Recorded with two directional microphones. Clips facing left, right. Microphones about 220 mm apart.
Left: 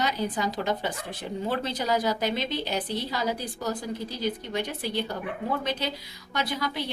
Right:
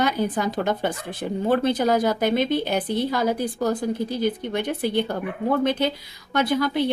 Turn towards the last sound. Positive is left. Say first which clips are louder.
# right 9 dB
turn(degrees=-55)  # may be behind; listen again after turning